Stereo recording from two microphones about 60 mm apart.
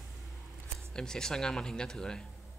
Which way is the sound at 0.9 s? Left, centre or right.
Centre.